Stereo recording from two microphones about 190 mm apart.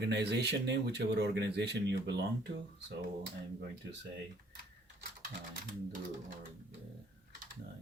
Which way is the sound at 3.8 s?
70° right (ahead or behind).